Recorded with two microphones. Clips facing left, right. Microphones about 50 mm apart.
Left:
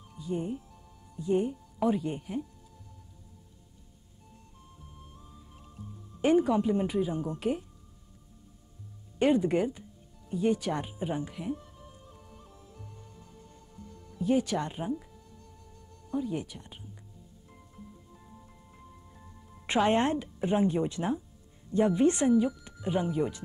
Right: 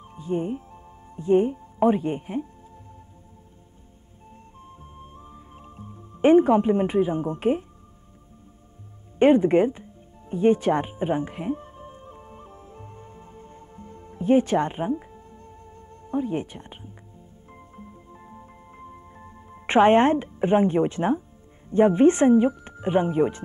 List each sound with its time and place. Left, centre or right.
0.0 s music: right
4.6 s music: right
9.2 s speech: right
10.3 s music: right
21.6 s speech: right